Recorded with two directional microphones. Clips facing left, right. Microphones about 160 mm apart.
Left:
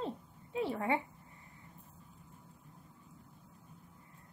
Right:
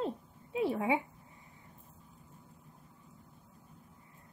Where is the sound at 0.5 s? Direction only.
10° right (ahead or behind).